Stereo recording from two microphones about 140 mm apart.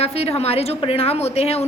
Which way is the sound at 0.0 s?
45° left (ahead or behind).